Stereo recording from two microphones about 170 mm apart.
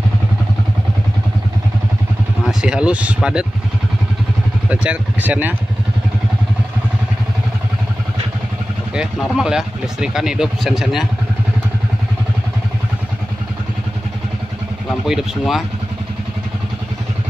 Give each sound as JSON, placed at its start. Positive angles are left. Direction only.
{"t": 2.4, "sound": "speech", "side_deg": -5}
{"t": 4.6, "sound": "speech", "side_deg": -10}
{"t": 8.9, "sound": "speech", "side_deg": -5}
{"t": 14.9, "sound": "speech", "side_deg": 0}